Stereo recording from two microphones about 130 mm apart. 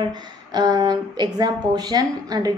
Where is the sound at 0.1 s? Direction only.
35° right (ahead or behind).